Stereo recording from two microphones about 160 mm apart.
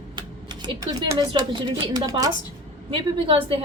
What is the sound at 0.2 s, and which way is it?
Speech, 30° right (ahead or behind).